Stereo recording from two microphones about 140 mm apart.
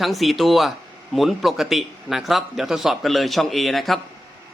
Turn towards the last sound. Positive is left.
turn(degrees=0)  # may be behind; listen again after turning